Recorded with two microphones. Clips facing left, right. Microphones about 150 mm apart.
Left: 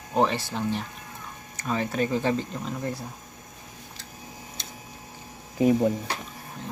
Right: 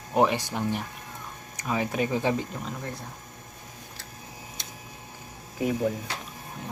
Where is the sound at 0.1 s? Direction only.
15° right (ahead or behind).